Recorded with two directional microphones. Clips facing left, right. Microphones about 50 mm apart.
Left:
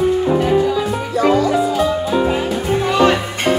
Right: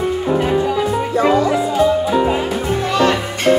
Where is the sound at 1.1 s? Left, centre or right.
Right.